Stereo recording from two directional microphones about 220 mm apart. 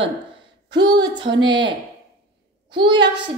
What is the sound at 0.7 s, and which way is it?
A child's voice, 20° right (ahead or behind).